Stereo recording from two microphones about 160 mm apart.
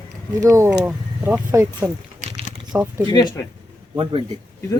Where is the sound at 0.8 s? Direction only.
10° right (ahead or behind).